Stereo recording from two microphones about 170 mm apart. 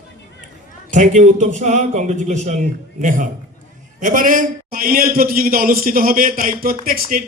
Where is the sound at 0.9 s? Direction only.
45° right (ahead or behind).